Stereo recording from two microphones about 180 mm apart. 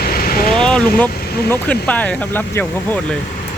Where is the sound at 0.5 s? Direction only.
5° left (ahead or behind).